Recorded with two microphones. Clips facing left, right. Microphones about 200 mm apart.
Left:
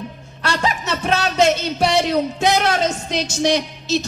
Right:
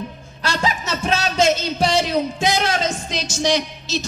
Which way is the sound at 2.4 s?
60° left (ahead or behind).